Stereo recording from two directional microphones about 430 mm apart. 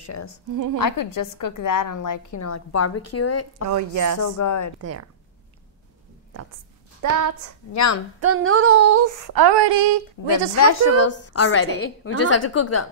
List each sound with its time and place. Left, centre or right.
0.0 s a woman's voice: left
0.5 s a woman's voice: right
0.7 s a woman's voice: left
3.7 s a sound: right
4.2 s a woman's voice: left
7.0 s a woman's voice: right
7.7 s a woman's voice: left
8.2 s a sound: right
10.5 s a woman's voice: left